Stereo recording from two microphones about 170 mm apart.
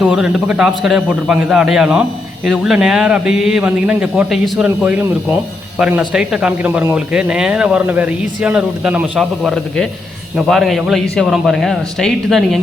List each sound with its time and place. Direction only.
0.0 s a man's voice: 5° right (ahead or behind)